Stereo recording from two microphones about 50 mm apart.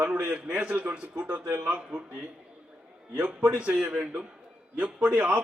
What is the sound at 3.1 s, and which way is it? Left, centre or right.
A man's voice, right.